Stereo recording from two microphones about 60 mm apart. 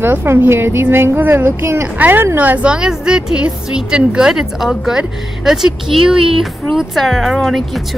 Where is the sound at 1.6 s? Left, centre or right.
Right.